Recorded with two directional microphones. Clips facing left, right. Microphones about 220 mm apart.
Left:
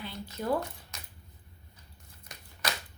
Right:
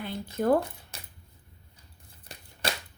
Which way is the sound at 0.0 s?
50° right (ahead or behind).